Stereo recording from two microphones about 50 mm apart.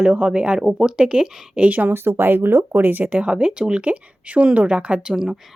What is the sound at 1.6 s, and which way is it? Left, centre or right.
Speech, right.